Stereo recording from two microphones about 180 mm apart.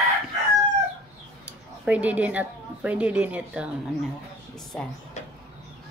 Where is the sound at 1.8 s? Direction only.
10° right (ahead or behind).